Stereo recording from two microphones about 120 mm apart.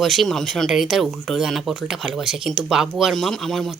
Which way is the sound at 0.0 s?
Centre (ahead or behind).